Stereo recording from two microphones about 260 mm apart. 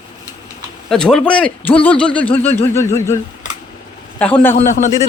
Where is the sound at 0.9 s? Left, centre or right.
Centre.